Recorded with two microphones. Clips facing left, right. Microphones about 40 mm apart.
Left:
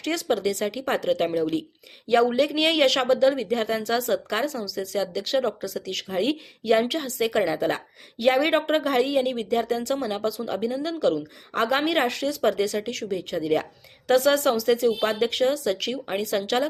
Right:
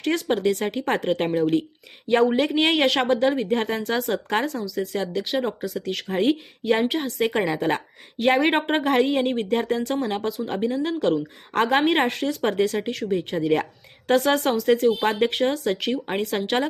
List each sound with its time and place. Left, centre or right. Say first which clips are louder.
0.0 s a woman's voice: right 2 dB; right
3.1 s a woman's voice: even; right
5.2 s speech: left 1 dB; centre
5.6 s a woman's voice: right 3 dB; right
7.1 s a woman's voice: even; right